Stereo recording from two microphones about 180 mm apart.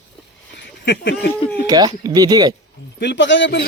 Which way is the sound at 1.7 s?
20° right (ahead or behind).